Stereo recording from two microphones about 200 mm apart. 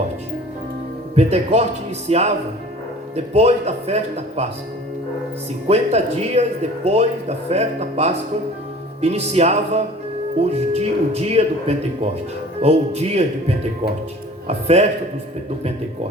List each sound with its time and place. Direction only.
1.1 s speech: 30° right (ahead or behind)
5.6 s speech: 30° right (ahead or behind)
12.6 s speech: 30° right (ahead or behind)